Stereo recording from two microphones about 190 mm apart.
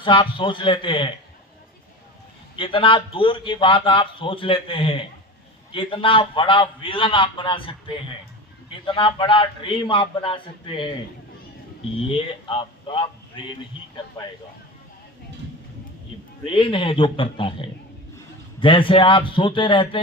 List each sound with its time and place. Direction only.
0.0 s a man's voice: 25° left (ahead or behind)
2.6 s a man's voice: 25° left (ahead or behind)
12.1 s speech: 25° left (ahead or behind)
16.5 s a man's voice: 25° left (ahead or behind)